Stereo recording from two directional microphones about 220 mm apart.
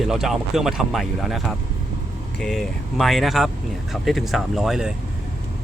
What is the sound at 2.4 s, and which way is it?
Speech, centre (ahead or behind).